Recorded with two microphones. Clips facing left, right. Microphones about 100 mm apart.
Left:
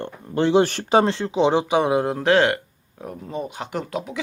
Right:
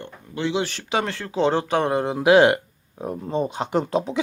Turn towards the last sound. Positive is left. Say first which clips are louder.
# right 6 dB
turn(degrees=-25)  # may be behind; listen again after turning